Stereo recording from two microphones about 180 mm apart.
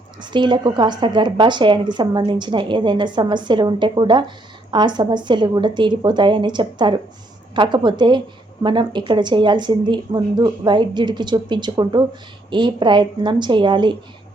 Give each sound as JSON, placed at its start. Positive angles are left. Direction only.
{"t": 0.2, "sound": "a woman's voice", "side_deg": -25}